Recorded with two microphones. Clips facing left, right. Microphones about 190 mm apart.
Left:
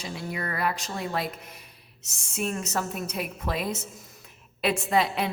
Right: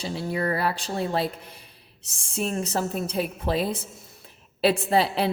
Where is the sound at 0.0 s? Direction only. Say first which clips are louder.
Right 6 dB; 30° right (ahead or behind).